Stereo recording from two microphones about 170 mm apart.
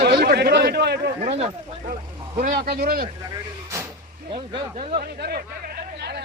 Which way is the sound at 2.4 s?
60° right (ahead or behind).